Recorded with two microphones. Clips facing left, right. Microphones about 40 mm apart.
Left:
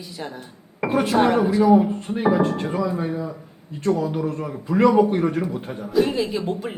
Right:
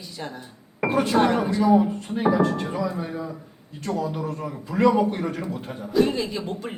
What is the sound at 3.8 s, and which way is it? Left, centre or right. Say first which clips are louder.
A man's voice: left 5 dB; left.